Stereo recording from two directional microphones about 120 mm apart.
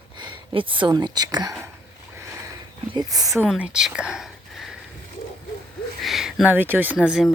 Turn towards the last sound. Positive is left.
turn(degrees=-10)  # may be behind; listen again after turning